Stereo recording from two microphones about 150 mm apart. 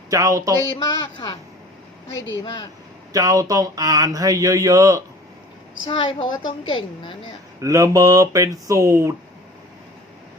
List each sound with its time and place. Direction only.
0.1 s speech: 20° right (ahead or behind)
2.4 s a woman's voice: 35° left (ahead or behind)
3.1 s speech: 25° right (ahead or behind)
5.9 s a woman's voice: 35° left (ahead or behind)
7.6 s speech: 20° right (ahead or behind)